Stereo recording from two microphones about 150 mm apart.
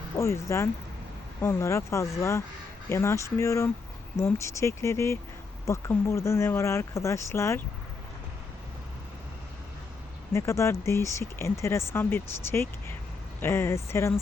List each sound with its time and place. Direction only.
0.2 s speech: 20° left (ahead or behind)
10.3 s speech: 20° left (ahead or behind)